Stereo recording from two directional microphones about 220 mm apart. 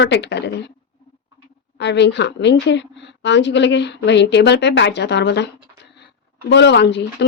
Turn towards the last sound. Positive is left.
turn(degrees=50)  # may be behind; listen again after turning